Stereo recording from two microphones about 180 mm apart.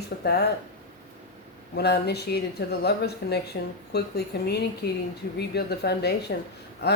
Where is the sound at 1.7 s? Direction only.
65° left (ahead or behind).